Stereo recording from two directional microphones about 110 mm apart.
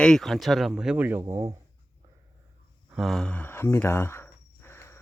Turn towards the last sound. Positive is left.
turn(degrees=25)  # may be behind; listen again after turning